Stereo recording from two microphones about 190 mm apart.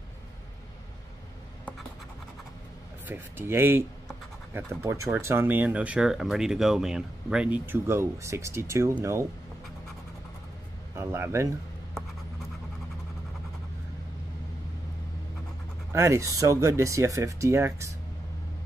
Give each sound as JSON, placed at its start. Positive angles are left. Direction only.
{"t": 3.1, "sound": "speech", "side_deg": -10}
{"t": 5.0, "sound": "speech", "side_deg": -15}
{"t": 11.0, "sound": "speech", "side_deg": -15}
{"t": 15.9, "sound": "speech", "side_deg": -15}